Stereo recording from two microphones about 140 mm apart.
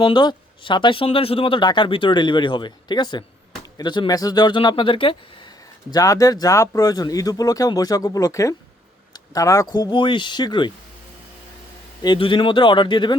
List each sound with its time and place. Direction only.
0.0 s speech: 35° left (ahead or behind)
5.9 s speech: 25° left (ahead or behind)
12.0 s speech: 35° left (ahead or behind)